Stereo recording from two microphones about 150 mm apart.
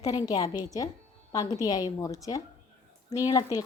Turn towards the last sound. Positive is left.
turn(degrees=25)  # may be behind; listen again after turning